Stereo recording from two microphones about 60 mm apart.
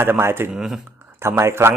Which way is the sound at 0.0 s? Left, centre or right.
Right.